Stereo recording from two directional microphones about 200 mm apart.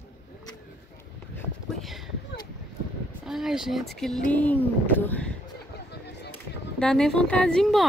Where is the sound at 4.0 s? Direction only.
Centre (ahead or behind).